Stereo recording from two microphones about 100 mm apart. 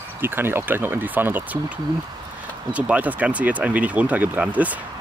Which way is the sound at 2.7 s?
15° right (ahead or behind).